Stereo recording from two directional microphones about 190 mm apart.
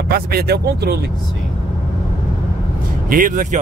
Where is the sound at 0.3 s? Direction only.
55° right (ahead or behind).